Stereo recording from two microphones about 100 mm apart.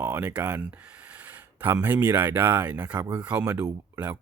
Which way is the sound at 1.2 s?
15° right (ahead or behind).